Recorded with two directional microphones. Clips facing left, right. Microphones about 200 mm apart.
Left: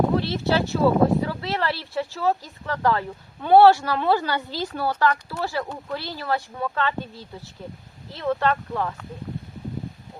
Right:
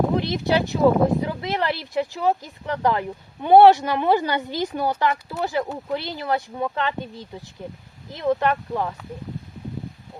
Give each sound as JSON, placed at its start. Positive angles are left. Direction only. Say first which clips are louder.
{"t": 0.2, "sound": "speech", "louder": "right 1 dB", "side_deg": -15}